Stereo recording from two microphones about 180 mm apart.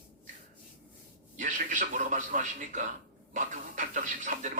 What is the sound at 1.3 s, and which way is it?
Speech, 45° right (ahead or behind).